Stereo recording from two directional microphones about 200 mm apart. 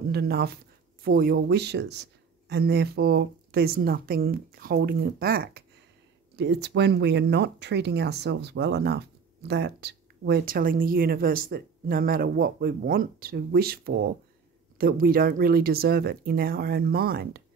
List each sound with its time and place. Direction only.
0.1 s speech: 50° right (ahead or behind)